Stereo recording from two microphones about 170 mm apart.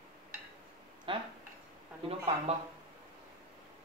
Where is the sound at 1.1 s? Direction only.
30° right (ahead or behind).